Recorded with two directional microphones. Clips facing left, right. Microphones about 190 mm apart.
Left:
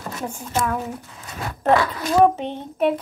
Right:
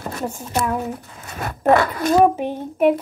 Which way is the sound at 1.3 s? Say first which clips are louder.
Right 2 dB; 50° right (ahead or behind).